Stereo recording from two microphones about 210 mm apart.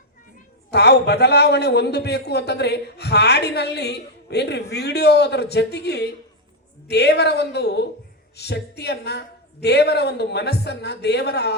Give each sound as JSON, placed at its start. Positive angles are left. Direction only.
{"t": 0.7, "sound": "a man's voice", "side_deg": 50}